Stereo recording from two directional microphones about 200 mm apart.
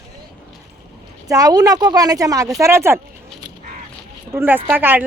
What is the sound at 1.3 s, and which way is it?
Speech, 20° right (ahead or behind).